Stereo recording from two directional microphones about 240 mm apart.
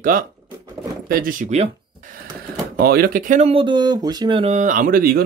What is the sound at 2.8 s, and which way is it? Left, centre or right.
Speech, right.